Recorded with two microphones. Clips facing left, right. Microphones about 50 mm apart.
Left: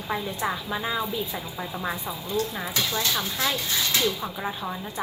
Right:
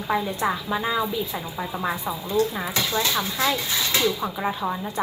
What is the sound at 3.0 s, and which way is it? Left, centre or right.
A woman's voice, right.